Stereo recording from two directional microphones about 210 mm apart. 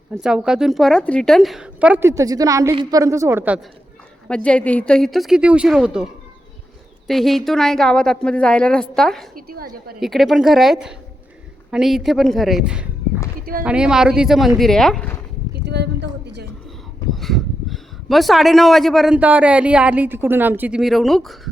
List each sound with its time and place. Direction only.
0.1 s a man's voice: 5° right (ahead or behind)
4.4 s a man's voice: 5° left (ahead or behind)
7.1 s a man's voice: centre (ahead or behind)
9.3 s a woman's voice: 45° right (ahead or behind)
10.0 s a man's voice: centre (ahead or behind)
13.4 s speech: 45° right (ahead or behind)
13.7 s a man's voice: 5° right (ahead or behind)
15.6 s a woman's voice: 55° right (ahead or behind)
17.2 s a man's voice: centre (ahead or behind)